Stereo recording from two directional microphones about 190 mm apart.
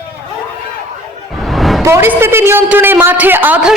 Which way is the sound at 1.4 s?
Centre (ahead or behind).